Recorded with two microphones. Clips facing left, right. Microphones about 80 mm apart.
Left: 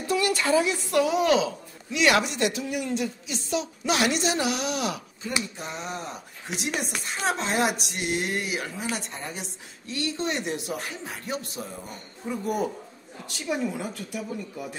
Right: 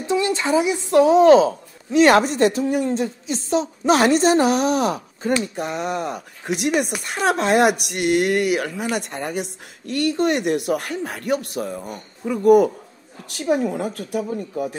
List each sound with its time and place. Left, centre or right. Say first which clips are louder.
0.0 s a woman's voice: right 4 dB; right
5.4 s a woman's voice: right 9 dB; right